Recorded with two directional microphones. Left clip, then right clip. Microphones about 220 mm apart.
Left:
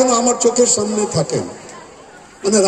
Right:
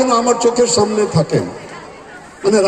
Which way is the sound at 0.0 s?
60° left (ahead or behind).